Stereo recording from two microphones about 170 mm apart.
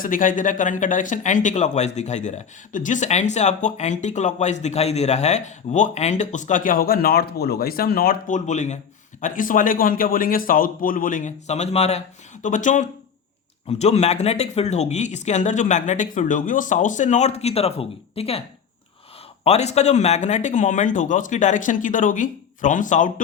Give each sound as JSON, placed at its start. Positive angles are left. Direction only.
{"t": 0.0, "sound": "speech", "side_deg": 55}
{"t": 8.4, "sound": "speech", "side_deg": 45}
{"t": 19.5, "sound": "speech", "side_deg": 40}